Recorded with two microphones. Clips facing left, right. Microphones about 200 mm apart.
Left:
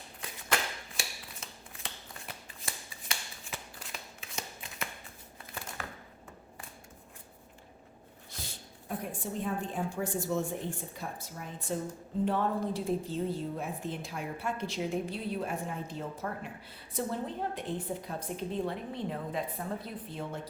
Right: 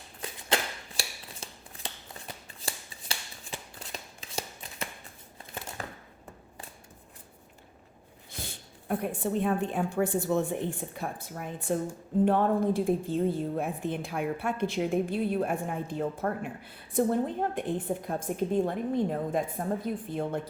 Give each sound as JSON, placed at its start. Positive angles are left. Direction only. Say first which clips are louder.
{"t": 0.2, "sound": "scissors", "louder": "right 3 dB", "side_deg": -30}
{"t": 2.6, "sound": "shuffling cards", "louder": "right 3 dB", "side_deg": -30}
{"t": 8.4, "sound": "a woman's voice", "louder": "right 5 dB", "side_deg": -60}